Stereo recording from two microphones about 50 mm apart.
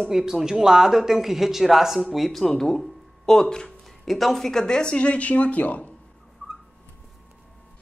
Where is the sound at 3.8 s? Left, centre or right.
Centre; by 5.9 s left.